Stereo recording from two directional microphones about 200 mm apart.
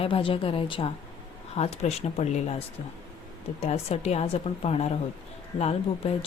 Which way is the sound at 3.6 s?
30° left (ahead or behind).